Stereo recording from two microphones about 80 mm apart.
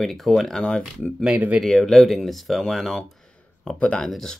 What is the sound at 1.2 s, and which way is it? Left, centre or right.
Speech, centre.